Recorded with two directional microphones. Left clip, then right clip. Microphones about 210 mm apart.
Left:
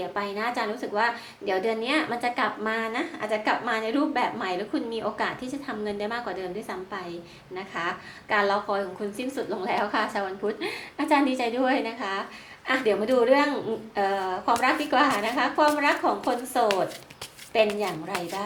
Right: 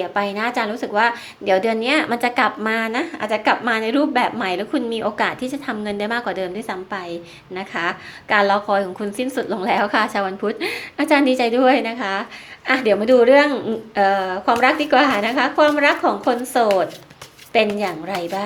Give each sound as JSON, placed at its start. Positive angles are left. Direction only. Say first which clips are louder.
{"t": 0.1, "sound": "a woman's voice", "louder": "right 8 dB", "side_deg": -45}